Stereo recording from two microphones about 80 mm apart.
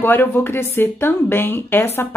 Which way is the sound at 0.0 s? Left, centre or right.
Left.